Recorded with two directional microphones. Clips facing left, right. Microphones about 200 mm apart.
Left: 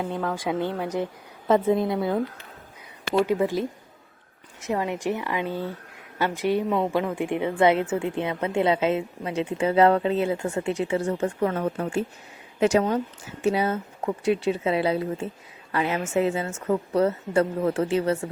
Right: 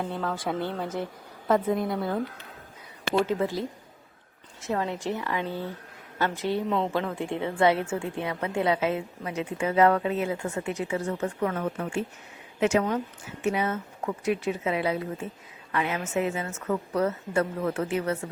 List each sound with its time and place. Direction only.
0.0 s a woman's voice: 10° left (ahead or behind)
3.2 s a woman's voice: 15° left (ahead or behind); by 18.2 s 30° left (ahead or behind)